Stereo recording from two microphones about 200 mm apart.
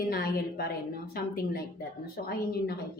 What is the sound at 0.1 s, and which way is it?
Speech, 50° left (ahead or behind).